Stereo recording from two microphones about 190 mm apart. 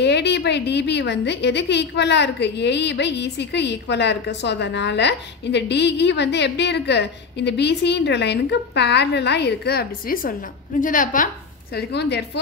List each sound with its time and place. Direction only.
0.0 s a woman's voice: 65° left (ahead or behind); by 11.2 s 45° left (ahead or behind)
11.7 s a woman's voice: 60° left (ahead or behind)